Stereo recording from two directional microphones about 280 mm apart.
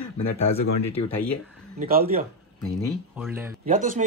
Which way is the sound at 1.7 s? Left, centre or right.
Right.